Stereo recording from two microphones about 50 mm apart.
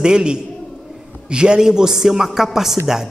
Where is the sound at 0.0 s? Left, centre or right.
Centre.